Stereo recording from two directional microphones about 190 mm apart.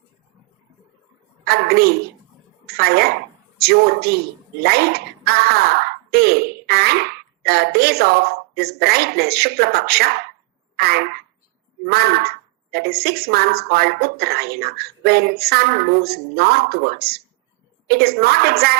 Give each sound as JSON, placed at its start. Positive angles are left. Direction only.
{"t": 1.5, "sound": "a woman's voice", "side_deg": -55}
{"t": 10.8, "sound": "a sound", "side_deg": -55}
{"t": 11.9, "sound": "a woman's voice", "side_deg": -55}